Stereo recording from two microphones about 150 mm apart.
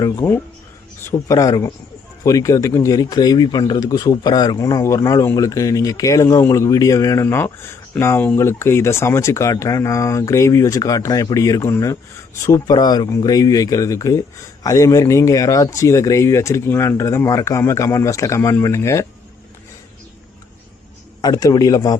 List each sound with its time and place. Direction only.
0.0 s speech: 25° left (ahead or behind)
21.2 s speech: 25° left (ahead or behind)